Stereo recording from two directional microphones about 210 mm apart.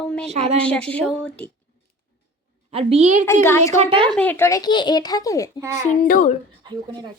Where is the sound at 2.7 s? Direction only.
25° right (ahead or behind).